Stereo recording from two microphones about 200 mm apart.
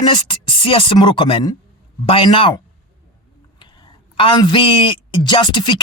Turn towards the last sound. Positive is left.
turn(degrees=25)  # may be behind; listen again after turning